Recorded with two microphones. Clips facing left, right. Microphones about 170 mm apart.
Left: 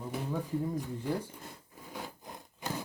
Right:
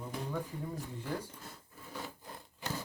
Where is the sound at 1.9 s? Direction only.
15° left (ahead or behind).